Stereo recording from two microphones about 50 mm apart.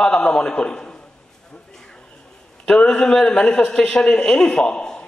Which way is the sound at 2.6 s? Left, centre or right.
Centre.